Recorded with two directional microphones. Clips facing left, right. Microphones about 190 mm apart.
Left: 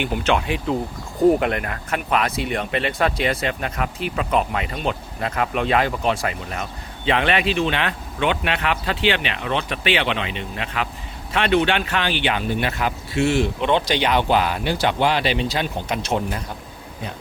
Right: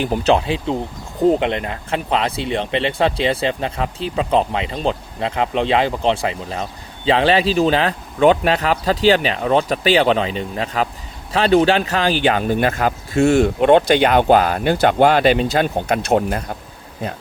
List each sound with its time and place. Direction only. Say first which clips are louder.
0.0 s speech: right 5 dB; 35° right (ahead or behind); by 16.4 s 55° right (ahead or behind)